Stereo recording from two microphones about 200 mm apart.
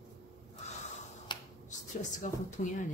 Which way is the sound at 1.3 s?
20° left (ahead or behind).